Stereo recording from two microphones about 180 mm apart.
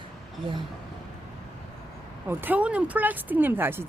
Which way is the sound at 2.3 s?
10° right (ahead or behind).